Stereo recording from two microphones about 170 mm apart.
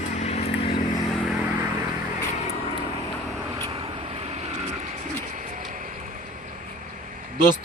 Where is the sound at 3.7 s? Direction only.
35° right (ahead or behind); by 6.1 s 50° right (ahead or behind).